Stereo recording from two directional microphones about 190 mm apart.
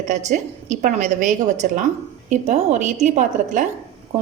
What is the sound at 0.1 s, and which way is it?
A woman's voice, 40° right (ahead or behind).